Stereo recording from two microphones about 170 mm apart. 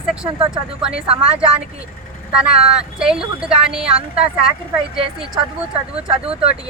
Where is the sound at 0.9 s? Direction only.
35° right (ahead or behind).